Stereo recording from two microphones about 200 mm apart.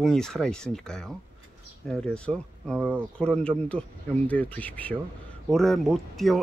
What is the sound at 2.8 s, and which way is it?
Speech, 10° right (ahead or behind).